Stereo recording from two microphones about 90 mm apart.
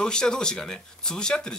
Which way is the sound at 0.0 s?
10° left (ahead or behind).